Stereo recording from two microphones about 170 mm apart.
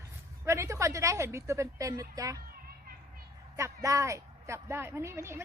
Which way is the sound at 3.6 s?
20° right (ahead or behind).